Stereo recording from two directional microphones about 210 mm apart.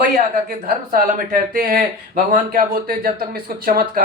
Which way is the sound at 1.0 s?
45° right (ahead or behind).